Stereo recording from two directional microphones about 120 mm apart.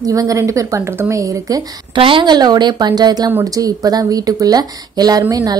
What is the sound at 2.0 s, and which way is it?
A woman's voice, 45° right (ahead or behind).